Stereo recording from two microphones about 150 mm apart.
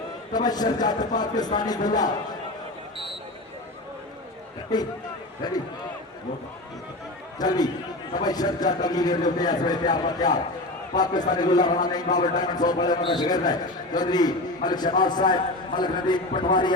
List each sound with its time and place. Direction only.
0.3 s a man's voice: 25° left (ahead or behind)
4.7 s a man's voice: 25° left (ahead or behind)
7.3 s a man's voice: 25° left (ahead or behind)